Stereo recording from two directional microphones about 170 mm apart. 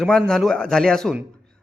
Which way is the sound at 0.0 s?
5° left (ahead or behind).